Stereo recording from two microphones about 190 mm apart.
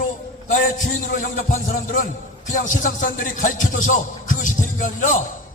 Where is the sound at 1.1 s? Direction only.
45° left (ahead or behind).